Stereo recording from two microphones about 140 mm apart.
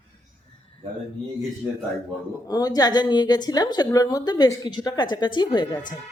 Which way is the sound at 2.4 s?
25° left (ahead or behind).